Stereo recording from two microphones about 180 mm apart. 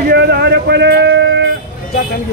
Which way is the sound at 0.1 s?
65° right (ahead or behind).